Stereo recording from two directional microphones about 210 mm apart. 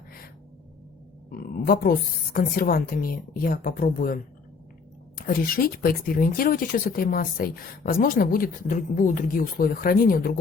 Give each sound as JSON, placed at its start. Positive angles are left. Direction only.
{"t": 1.3, "sound": "speech", "side_deg": 45}